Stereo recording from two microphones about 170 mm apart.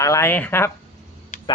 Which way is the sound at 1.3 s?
50° left (ahead or behind).